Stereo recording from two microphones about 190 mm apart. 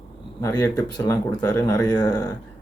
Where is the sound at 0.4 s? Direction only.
20° left (ahead or behind).